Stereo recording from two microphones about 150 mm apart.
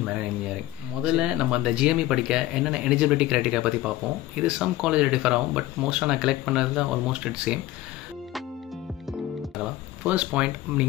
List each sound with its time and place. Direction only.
1.0 s speech: 5° right (ahead or behind)
10.0 s speech: 10° right (ahead or behind)